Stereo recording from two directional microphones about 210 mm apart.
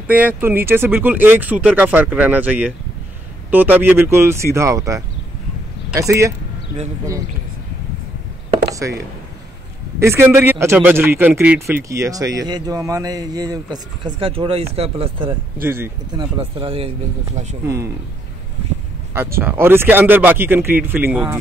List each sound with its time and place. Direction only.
0.1 s speech: 10° right (ahead or behind)
8.7 s speech: 15° right (ahead or behind)
15.6 s speech: 10° right (ahead or behind)
16.2 s speech: 25° right (ahead or behind)
19.4 s speech: 10° right (ahead or behind)